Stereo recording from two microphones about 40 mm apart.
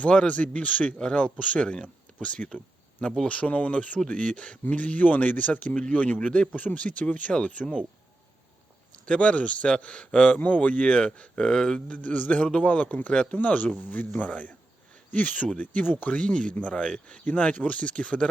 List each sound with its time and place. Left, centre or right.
0.3 s speech: left
0.9 s speech: left
1.6 s speech: centre
4.6 s speech: left
5.9 s speech: left
6.1 s speech: left
6.6 s speech: left
9.0 s speech: left
12.1 s speech: left
12.4 s speech: left
12.6 s speech: left
16.2 s speech: left
16.7 s speech: centre
17.4 s speech: left